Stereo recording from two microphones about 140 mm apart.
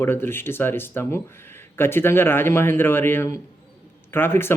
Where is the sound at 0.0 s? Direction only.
15° left (ahead or behind).